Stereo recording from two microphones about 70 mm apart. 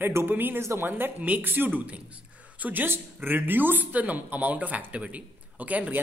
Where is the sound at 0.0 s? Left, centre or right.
Right.